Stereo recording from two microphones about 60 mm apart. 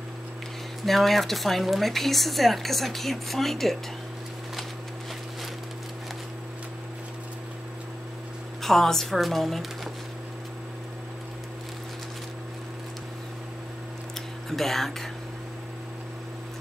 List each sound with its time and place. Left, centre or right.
0.8 s speech: centre
8.6 s speech: centre
14.5 s speech: centre